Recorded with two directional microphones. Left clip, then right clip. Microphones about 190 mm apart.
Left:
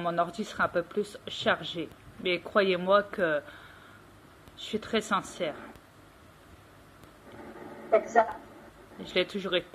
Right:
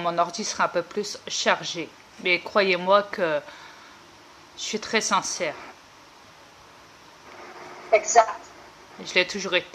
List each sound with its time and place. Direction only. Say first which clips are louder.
0.0 s speech: right 5 dB; 20° right (ahead or behind)
4.6 s speech: right 6 dB; 15° right (ahead or behind)
8.0 s a woman's voice: right 8 dB; 10° left (ahead or behind)
9.1 s speech: right 6 dB; 15° right (ahead or behind)